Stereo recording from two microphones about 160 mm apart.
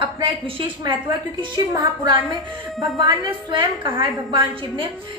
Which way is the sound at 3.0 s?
30° right (ahead or behind).